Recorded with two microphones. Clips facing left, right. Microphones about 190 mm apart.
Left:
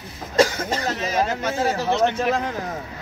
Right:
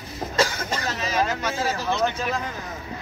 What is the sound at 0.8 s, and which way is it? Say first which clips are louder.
Speech: left 1 dB; 50° left (ahead or behind).